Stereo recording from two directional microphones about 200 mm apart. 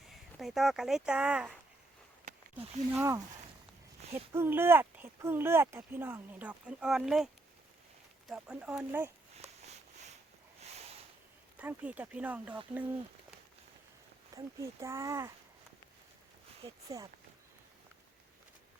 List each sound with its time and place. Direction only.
0.1 s speech: centre (ahead or behind)
2.9 s speech: 15° right (ahead or behind)
8.3 s speech: centre (ahead or behind)
10.6 s a sound: 30° right (ahead or behind)
11.5 s speech: 10° right (ahead or behind)
14.3 s speech: 15° right (ahead or behind)
16.9 s speech: 15° right (ahead or behind)